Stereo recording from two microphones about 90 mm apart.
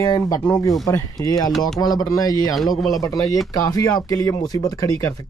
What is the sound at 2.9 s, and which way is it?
Speech, 40° left (ahead or behind).